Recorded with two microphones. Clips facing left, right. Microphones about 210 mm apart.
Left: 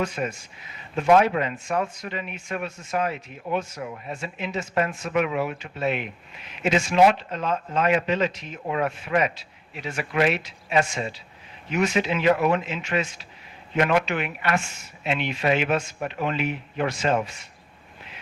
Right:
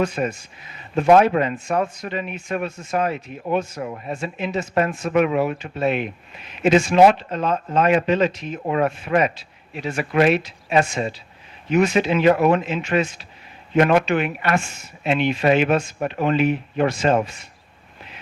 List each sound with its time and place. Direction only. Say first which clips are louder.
0.2 s speech: right 5 dB; 45° right (ahead or behind)